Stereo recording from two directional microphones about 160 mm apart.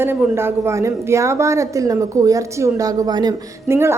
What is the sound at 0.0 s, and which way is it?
A woman's voice, 15° right (ahead or behind).